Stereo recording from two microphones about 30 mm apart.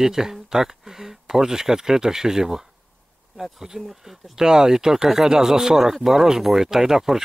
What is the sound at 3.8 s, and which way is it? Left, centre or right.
Speech, centre.